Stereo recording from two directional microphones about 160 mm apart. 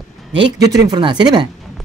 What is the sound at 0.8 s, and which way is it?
Speech, 25° right (ahead or behind).